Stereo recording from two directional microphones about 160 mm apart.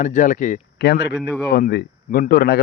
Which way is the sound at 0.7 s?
90° left.